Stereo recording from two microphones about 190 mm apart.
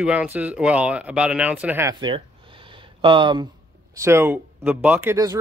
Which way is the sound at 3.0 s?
25° right (ahead or behind).